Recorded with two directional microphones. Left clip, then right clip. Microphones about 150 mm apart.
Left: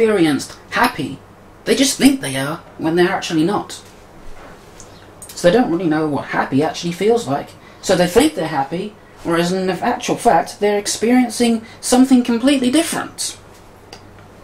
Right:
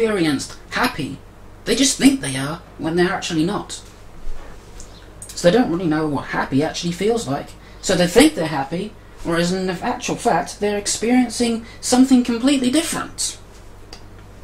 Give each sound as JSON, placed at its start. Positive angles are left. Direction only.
{"t": 0.0, "sound": "speech", "side_deg": 15}
{"t": 5.4, "sound": "speech", "side_deg": 10}